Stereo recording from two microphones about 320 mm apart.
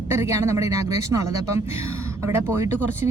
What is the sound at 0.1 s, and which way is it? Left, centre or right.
Speech, centre.